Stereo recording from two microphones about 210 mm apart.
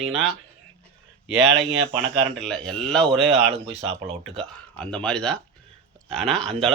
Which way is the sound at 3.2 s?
30° right (ahead or behind).